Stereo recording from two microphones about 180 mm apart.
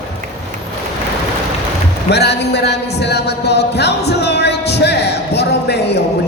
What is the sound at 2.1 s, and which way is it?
Music, 65° left (ahead or behind).